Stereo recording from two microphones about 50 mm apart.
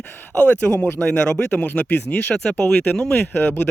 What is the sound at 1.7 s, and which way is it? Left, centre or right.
Speech, left.